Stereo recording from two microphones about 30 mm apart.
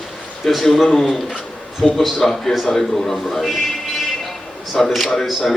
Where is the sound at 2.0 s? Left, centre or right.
Centre.